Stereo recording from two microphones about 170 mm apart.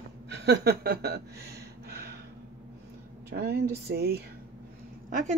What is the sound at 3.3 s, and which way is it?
Speech, 70° right (ahead or behind).